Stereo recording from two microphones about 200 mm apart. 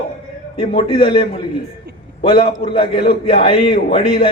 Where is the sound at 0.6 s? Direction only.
25° left (ahead or behind).